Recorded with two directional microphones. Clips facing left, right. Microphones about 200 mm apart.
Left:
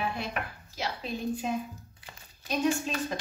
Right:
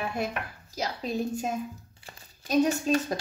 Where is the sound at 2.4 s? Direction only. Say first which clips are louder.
Right 5 dB; 40° right (ahead or behind).